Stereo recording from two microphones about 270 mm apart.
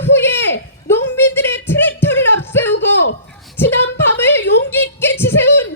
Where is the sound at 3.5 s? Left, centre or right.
Centre.